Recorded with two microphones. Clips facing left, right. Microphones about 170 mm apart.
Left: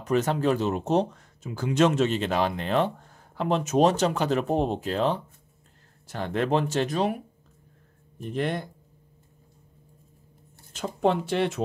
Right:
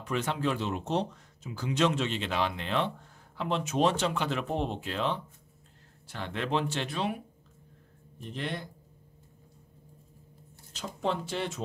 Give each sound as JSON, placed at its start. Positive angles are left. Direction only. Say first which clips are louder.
{"t": 0.0, "sound": "speech", "louder": "left 7 dB", "side_deg": 40}
{"t": 8.2, "sound": "speech", "louder": "left 8 dB", "side_deg": 50}
{"t": 10.7, "sound": "speech", "louder": "left 8 dB", "side_deg": 55}